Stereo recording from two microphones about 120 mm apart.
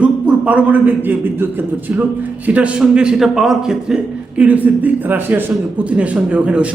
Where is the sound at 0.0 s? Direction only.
10° right (ahead or behind).